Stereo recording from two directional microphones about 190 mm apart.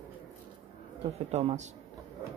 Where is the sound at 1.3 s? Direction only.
35° right (ahead or behind).